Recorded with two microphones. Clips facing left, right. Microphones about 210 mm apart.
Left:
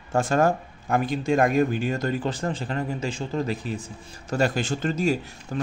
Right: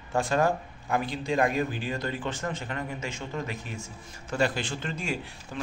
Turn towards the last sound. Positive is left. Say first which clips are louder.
# left 6 dB
turn(degrees=40)  # may be behind; listen again after turning